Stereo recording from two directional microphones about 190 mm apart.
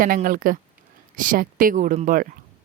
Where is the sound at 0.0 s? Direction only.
45° right (ahead or behind).